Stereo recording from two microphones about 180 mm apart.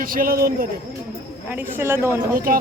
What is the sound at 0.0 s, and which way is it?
Speech, 50° right (ahead or behind).